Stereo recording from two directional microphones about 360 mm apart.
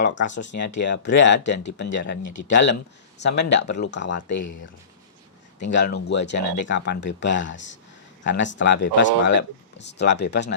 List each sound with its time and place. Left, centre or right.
0.0 s speech: left
5.6 s speech: left